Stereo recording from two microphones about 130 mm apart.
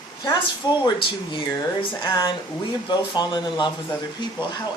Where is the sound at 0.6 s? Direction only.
30° left (ahead or behind).